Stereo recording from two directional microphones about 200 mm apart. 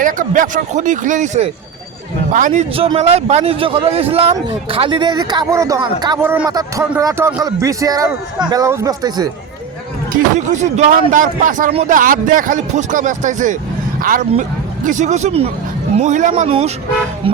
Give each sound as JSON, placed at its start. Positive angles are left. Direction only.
{"t": 0.0, "sound": "a man's voice", "side_deg": -40}
{"t": 10.1, "sound": "speech", "side_deg": -40}